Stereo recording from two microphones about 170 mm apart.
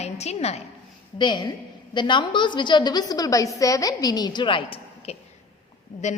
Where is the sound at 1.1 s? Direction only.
25° left (ahead or behind).